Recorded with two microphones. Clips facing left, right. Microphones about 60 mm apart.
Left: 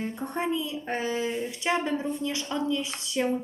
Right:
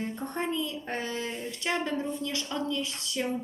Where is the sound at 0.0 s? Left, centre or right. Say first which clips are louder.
Left 2 dB; centre.